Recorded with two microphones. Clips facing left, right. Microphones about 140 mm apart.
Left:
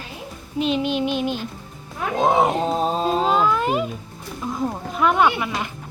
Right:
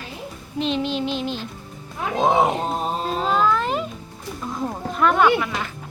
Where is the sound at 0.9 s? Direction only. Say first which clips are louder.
Left 3 dB; 55° left (ahead or behind).